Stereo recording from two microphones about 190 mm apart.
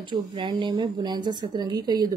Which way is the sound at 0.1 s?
25° right (ahead or behind).